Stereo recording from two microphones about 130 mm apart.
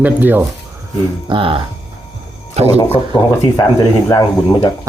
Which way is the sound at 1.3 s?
40° right (ahead or behind).